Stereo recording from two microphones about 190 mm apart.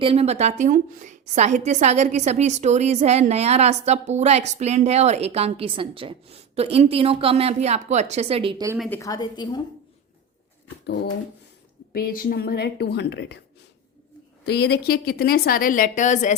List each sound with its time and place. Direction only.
0.0 s a woman's voice: 30° right (ahead or behind)
8.9 s a woman's voice: 20° left (ahead or behind)
10.8 s speech: 55° left (ahead or behind)
14.4 s a woman's voice: 60° left (ahead or behind); by 16.3 s 40° left (ahead or behind)